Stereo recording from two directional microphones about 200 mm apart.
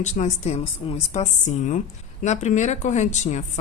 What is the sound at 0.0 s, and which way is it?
Speech, 35° left (ahead or behind).